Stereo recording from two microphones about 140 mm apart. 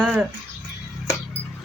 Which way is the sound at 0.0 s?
5° right (ahead or behind).